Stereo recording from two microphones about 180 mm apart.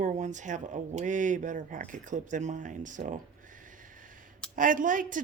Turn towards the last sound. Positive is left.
turn(degrees=-45)  # may be behind; listen again after turning